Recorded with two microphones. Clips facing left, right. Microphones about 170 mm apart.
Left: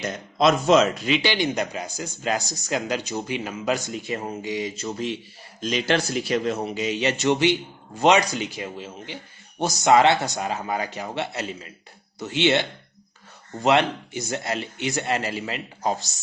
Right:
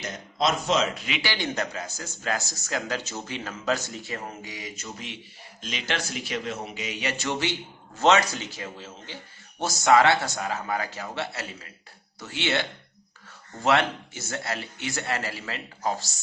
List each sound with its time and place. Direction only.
0.3 s speech: 55° left (ahead or behind)
1.2 s speech: 20° left (ahead or behind)